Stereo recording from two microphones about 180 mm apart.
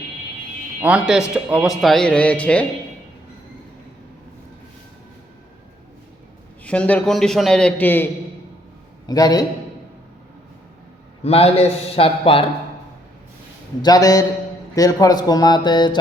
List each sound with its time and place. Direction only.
0.8 s speech: 5° right (ahead or behind)
6.7 s speech: 10° left (ahead or behind)
9.0 s speech: 20° left (ahead or behind)
11.2 s a man's voice: 35° left (ahead or behind)
13.8 s speech: 20° left (ahead or behind)